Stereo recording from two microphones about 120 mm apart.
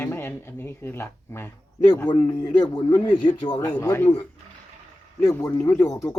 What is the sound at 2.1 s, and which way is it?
Speech, 40° left (ahead or behind).